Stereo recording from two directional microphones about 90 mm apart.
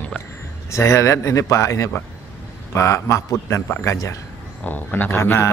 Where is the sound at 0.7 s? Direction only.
35° left (ahead or behind).